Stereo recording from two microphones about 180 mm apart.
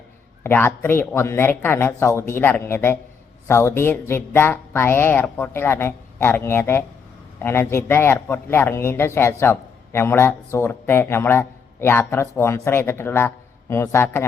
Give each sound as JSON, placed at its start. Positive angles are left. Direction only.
{"t": 0.4, "sound": "speech", "side_deg": 10}